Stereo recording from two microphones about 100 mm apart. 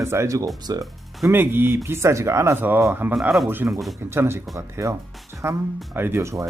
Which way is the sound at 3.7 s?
Centre (ahead or behind).